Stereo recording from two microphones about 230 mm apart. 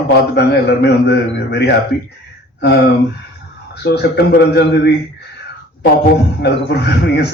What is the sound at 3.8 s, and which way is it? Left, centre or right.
Speech, left.